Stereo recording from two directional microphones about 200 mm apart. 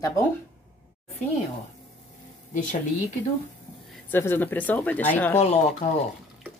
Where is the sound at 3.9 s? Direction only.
10° left (ahead or behind).